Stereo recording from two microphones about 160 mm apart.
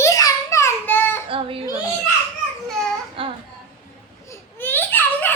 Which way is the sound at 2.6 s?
5° left (ahead or behind).